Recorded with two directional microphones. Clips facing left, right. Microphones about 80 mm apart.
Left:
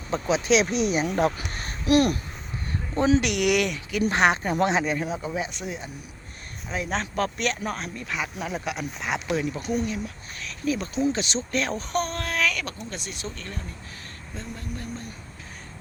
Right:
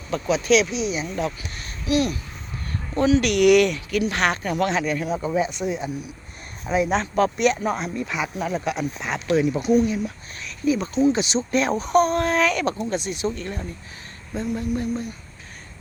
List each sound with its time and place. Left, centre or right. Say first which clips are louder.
0.1 s speech: right 3 dB; left
0.6 s speech: left 1 dB; left
3.2 s speech: right 7 dB; centre
4.1 s speech: left 1 dB; left
5.1 s speech: right 6 dB; centre
9.4 s speech: right 8 dB; centre